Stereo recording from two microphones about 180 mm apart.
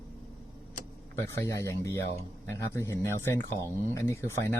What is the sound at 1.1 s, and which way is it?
Speech, 15° left (ahead or behind).